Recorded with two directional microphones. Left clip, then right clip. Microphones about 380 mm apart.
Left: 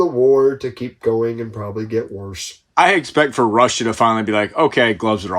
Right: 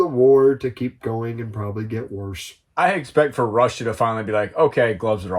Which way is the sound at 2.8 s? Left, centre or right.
Left.